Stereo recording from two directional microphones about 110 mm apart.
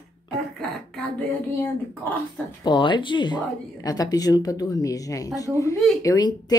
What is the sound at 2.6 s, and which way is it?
Speech, 45° left (ahead or behind).